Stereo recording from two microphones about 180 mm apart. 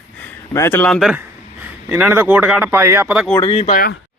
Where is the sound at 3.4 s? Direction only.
30° left (ahead or behind).